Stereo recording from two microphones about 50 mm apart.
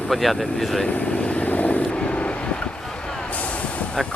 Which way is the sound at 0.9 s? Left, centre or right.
Left.